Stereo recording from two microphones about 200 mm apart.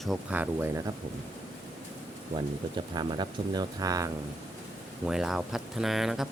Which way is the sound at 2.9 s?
20° right (ahead or behind).